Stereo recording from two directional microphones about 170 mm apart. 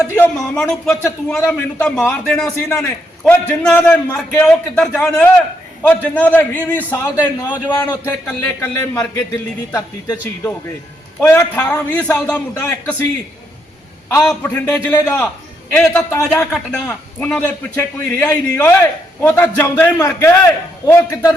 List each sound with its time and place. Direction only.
0.0 s a man's voice: 15° left (ahead or behind)
0.3 s a man's voice: 5° left (ahead or behind)
14.3 s a man's voice: 10° left (ahead or behind)